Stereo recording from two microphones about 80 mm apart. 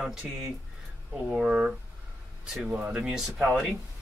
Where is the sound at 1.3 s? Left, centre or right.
Centre.